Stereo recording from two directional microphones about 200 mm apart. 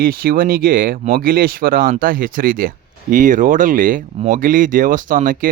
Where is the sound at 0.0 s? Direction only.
45° right (ahead or behind).